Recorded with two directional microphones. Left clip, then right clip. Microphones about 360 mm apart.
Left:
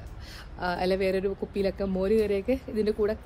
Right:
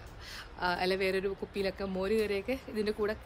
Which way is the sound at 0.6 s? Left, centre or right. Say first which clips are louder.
Left 4 dB; centre.